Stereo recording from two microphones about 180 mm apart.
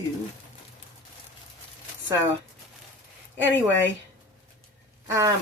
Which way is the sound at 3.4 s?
90° left.